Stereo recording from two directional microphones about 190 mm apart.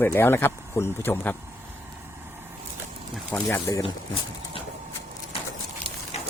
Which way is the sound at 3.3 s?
15° left (ahead or behind).